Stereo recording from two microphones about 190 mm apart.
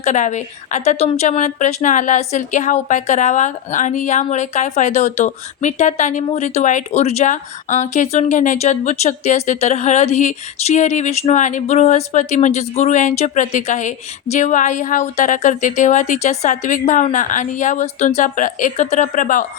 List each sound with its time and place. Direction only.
0.0 s a woman's voice: 40° left (ahead or behind)